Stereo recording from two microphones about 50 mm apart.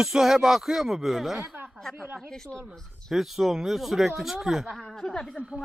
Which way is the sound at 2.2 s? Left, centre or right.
Centre.